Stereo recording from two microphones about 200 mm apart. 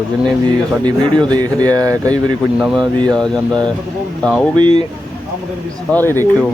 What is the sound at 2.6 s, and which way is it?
Speech, 5° right (ahead or behind).